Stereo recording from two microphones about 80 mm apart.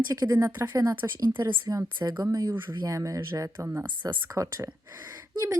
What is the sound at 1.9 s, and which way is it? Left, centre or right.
Speech, right.